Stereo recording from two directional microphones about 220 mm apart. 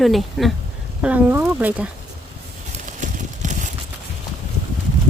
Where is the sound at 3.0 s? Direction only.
35° right (ahead or behind).